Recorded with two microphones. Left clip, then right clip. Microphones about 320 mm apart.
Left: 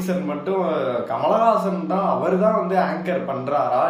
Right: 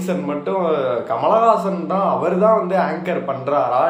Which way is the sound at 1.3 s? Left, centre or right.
Centre.